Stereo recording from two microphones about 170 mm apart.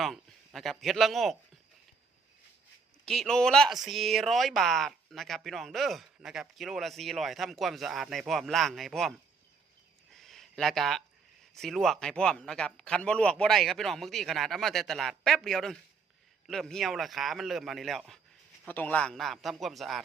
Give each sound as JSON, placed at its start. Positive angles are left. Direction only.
{"t": 0.0, "sound": "a man's voice", "side_deg": 0}
{"t": 3.1, "sound": "speech", "side_deg": 5}
{"t": 10.1, "sound": "a sound", "side_deg": 0}
{"t": 11.5, "sound": "speech", "side_deg": 0}